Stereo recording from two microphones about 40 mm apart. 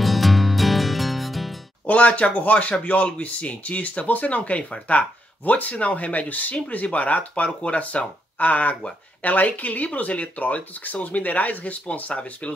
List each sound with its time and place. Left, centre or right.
0.0 s music: centre
1.9 s speech: left